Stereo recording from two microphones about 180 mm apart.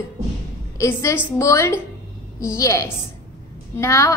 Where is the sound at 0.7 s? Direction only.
15° left (ahead or behind).